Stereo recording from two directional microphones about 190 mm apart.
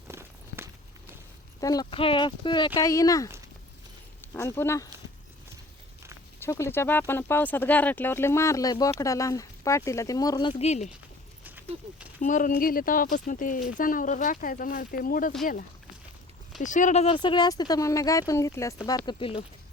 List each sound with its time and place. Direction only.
0.1 s walk: 15° right (ahead or behind)
1.6 s speech: 20° left (ahead or behind)
4.4 s speech: 15° left (ahead or behind)
6.4 s speech: 15° left (ahead or behind); by 10.9 s 35° left (ahead or behind)
11.4 s horse: 10° right (ahead or behind)
12.2 s speech: 45° left (ahead or behind)
16.6 s speech: 40° left (ahead or behind)